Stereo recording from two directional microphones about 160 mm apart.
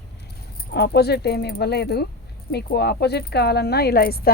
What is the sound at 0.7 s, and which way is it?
Speech, 90° left.